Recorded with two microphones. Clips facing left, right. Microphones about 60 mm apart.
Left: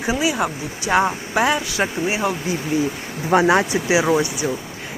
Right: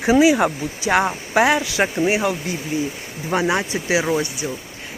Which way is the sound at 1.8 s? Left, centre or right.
Right.